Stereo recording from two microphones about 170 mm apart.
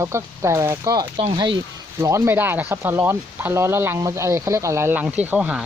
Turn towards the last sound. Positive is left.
turn(degrees=-5)  # may be behind; listen again after turning